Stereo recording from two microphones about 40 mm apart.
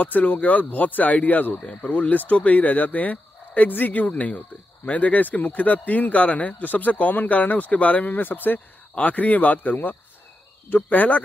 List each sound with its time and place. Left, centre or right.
0.0 s speech: left
1.6 s speech: left
1.9 s speech: left
8.9 s speech: left